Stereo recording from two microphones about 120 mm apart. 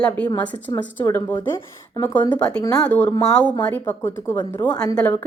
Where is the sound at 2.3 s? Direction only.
10° left (ahead or behind).